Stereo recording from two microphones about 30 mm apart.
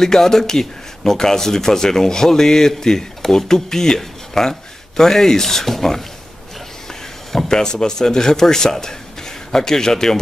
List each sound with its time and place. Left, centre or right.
0.0 s speech: centre
7.4 s speech: left